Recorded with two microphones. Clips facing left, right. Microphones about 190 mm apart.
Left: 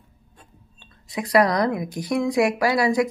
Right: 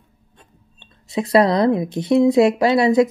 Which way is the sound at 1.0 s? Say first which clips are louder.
Right 4 dB; 25° right (ahead or behind).